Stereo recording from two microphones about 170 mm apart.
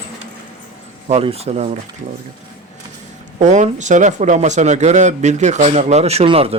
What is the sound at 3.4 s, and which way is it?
Speech, 45° right (ahead or behind).